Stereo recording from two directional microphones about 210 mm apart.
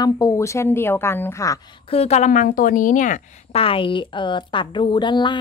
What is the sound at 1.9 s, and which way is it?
A woman's voice, 30° left (ahead or behind).